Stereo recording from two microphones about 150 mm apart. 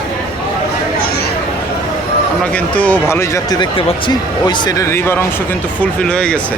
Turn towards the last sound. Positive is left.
turn(degrees=5)  # may be behind; listen again after turning